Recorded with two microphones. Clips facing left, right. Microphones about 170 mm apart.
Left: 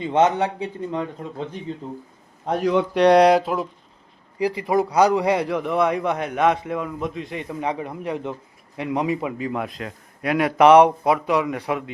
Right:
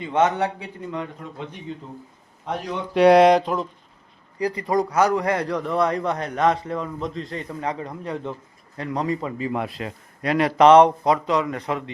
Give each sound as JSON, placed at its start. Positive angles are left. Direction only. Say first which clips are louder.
{"t": 0.0, "sound": "a man's voice", "louder": "left 2 dB", "side_deg": 25}
{"t": 0.9, "sound": "speech", "louder": "right 1 dB", "side_deg": 30}
{"t": 2.9, "sound": "a man's voice", "louder": "right 2 dB", "side_deg": 0}
{"t": 9.4, "sound": "a man's voice", "louder": "right 1 dB", "side_deg": 0}